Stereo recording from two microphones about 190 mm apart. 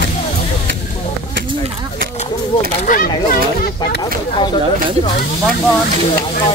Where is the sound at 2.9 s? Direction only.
45° left (ahead or behind).